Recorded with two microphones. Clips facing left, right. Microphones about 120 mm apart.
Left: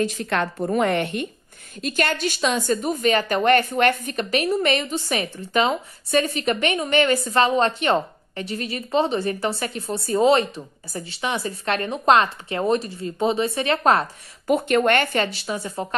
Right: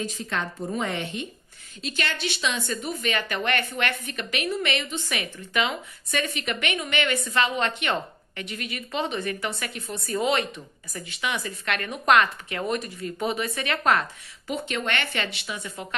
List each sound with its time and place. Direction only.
0.0 s a woman's voice: 70° left (ahead or behind)
1.8 s a woman's voice: 45° left (ahead or behind); by 14.0 s 30° left (ahead or behind)
14.5 s a woman's voice: 50° left (ahead or behind)